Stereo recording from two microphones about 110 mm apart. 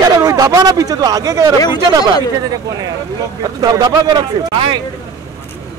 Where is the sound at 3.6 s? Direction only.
35° right (ahead or behind).